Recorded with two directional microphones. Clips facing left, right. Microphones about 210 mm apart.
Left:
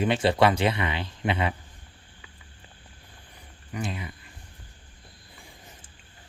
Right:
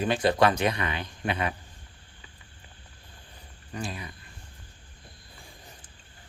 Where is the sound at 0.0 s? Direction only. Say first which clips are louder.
Left 1 dB; 25° left (ahead or behind).